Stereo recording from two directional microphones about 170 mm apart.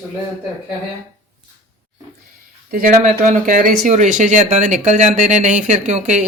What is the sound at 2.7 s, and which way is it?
Speech, 50° right (ahead or behind).